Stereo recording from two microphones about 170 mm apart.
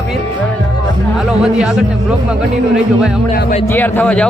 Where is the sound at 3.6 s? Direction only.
10° left (ahead or behind).